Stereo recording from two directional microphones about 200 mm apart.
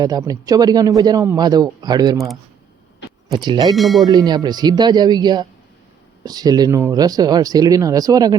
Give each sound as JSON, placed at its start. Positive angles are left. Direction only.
{"t": 0.0, "sound": "a man's voice", "side_deg": -20}
{"t": 2.1, "sound": "speech", "side_deg": 0}
{"t": 3.3, "sound": "a man's voice", "side_deg": -20}
{"t": 3.8, "sound": "speech", "side_deg": 0}
{"t": 4.1, "sound": "a man's voice", "side_deg": -20}